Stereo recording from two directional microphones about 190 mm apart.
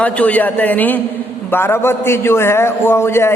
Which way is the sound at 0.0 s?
5° left (ahead or behind).